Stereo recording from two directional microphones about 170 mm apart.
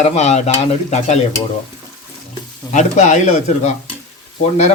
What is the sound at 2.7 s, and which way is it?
A man's voice, 45° left (ahead or behind).